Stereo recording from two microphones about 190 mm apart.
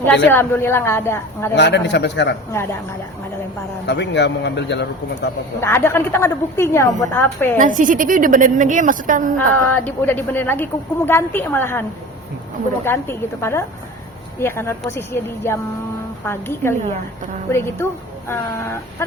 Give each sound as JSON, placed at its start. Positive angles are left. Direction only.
{"t": 0.3, "sound": "a woman's voice", "side_deg": 10}
{"t": 1.5, "sound": "a man's voice", "side_deg": 65}
{"t": 3.8, "sound": "a man's voice", "side_deg": 65}
{"t": 5.5, "sound": "a woman's voice", "side_deg": 10}
{"t": 7.6, "sound": "a woman's voice", "side_deg": -45}
{"t": 9.6, "sound": "a woman's voice", "side_deg": 10}